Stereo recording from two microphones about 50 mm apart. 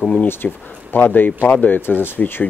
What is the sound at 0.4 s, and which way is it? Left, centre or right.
Speech, left.